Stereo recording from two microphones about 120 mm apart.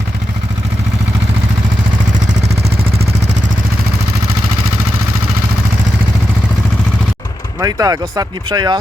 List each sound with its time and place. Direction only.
2.7 s vehicle: 60° right (ahead or behind)
7.6 s speech: 30° right (ahead or behind)